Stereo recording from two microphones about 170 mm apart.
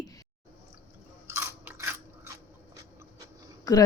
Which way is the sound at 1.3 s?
10° right (ahead or behind).